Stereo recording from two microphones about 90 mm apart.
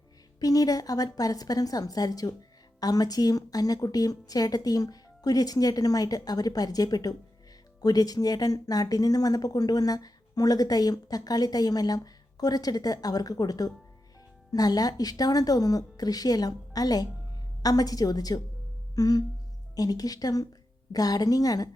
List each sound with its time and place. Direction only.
0.3 s speech: 45° left (ahead or behind)